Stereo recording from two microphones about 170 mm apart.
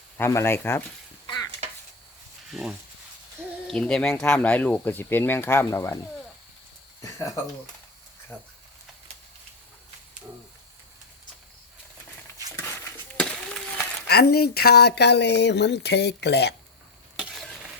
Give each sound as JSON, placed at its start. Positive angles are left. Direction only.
{"t": 0.2, "sound": "speech", "side_deg": 15}
{"t": 2.5, "sound": "speech", "side_deg": 0}
{"t": 7.0, "sound": "a sound", "side_deg": 20}
{"t": 8.3, "sound": "speech", "side_deg": -5}
{"t": 12.5, "sound": "a sound", "side_deg": 10}
{"t": 14.1, "sound": "speech", "side_deg": 70}
{"t": 17.2, "sound": "stir", "side_deg": 0}